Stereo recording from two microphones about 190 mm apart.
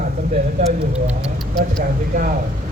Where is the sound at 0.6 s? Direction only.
35° right (ahead or behind).